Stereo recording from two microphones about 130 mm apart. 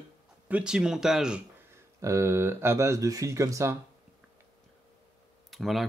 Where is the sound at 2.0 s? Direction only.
20° right (ahead or behind).